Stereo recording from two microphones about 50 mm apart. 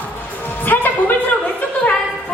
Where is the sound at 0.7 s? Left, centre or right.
Left.